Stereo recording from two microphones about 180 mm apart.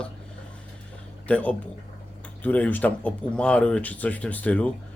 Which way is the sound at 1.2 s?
5° left (ahead or behind).